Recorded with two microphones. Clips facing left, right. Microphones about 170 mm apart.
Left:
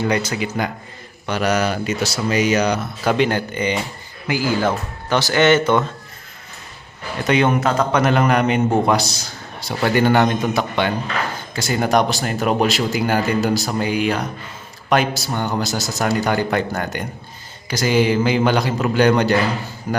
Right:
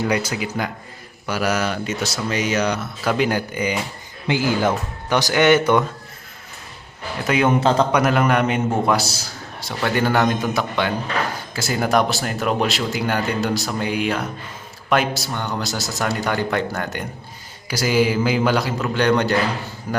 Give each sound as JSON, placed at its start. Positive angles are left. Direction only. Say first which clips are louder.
{"t": 0.0, "sound": "speech", "louder": "left 1 dB", "side_deg": -10}
{"t": 4.3, "sound": "speech", "louder": "even", "side_deg": -20}
{"t": 7.3, "sound": "speech", "louder": "left 2 dB", "side_deg": -5}
{"t": 7.6, "sound": "speech", "louder": "right 2 dB", "side_deg": -25}
{"t": 7.9, "sound": "a man's voice", "louder": "left 1 dB", "side_deg": -5}
{"t": 15.3, "sound": "speech", "louder": "left 4 dB", "side_deg": 30}
{"t": 15.5, "sound": "speech", "louder": "left 3 dB", "side_deg": 0}